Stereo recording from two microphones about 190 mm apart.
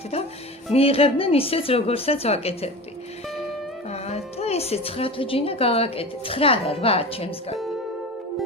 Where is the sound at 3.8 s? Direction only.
35° left (ahead or behind).